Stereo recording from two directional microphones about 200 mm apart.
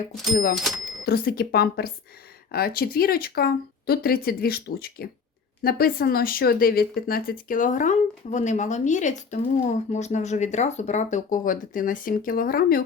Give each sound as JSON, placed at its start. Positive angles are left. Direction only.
{"t": 1.0, "sound": "speech", "side_deg": 50}